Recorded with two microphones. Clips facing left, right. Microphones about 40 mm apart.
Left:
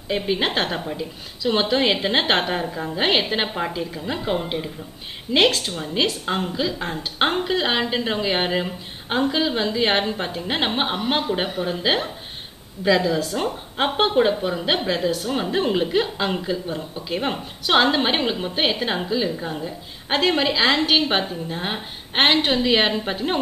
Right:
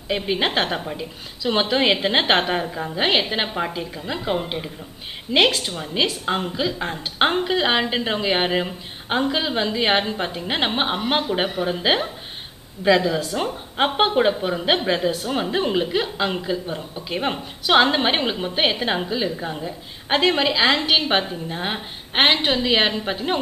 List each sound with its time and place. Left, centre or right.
0.1 s a woman's voice: centre
3.7 s a woman's voice: centre
13.1 s a woman's voice: centre